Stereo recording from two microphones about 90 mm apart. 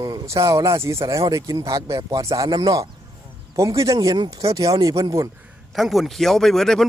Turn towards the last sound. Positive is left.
turn(degrees=5)  # may be behind; listen again after turning